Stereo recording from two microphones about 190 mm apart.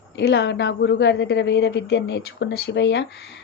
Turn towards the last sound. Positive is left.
turn(degrees=70)  # may be behind; listen again after turning